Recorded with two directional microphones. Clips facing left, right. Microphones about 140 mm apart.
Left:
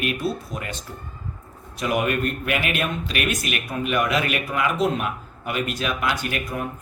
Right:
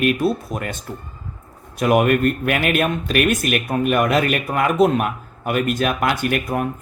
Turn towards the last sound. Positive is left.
turn(degrees=-55)  # may be behind; listen again after turning